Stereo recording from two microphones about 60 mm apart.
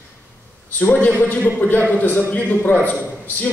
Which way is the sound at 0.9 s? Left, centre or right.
Left.